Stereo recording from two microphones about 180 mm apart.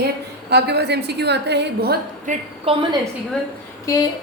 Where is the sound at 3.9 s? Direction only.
20° left (ahead or behind).